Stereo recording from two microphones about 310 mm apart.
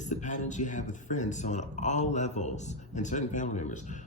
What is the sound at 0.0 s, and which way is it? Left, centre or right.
Speech, left.